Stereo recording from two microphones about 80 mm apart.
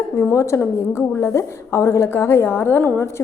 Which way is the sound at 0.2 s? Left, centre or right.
Left.